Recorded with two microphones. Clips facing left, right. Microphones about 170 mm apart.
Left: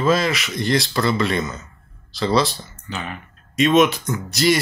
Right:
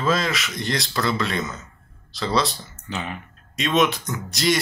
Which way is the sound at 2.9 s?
20° right (ahead or behind).